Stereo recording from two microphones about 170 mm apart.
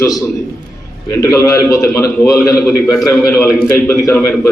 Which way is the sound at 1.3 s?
20° left (ahead or behind).